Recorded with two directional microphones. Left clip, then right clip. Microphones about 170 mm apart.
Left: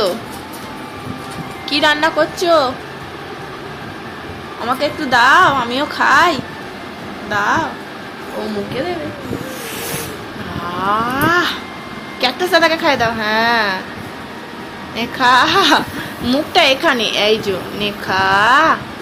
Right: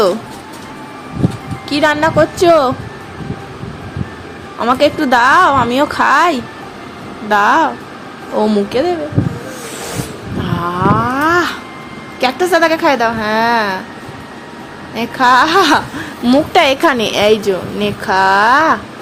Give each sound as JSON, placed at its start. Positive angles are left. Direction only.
{"t": 1.7, "sound": "speech", "side_deg": -35}
{"t": 2.4, "sound": "a woman's voice", "side_deg": -60}
{"t": 4.6, "sound": "a woman's voice", "side_deg": -60}
{"t": 8.7, "sound": "speech", "side_deg": -90}
{"t": 10.9, "sound": "a sound", "side_deg": -40}
{"t": 12.2, "sound": "speech", "side_deg": -45}
{"t": 14.9, "sound": "speech", "side_deg": -35}